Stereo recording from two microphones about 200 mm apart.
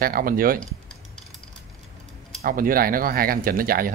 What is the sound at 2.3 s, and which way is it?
Speech, 45° right (ahead or behind).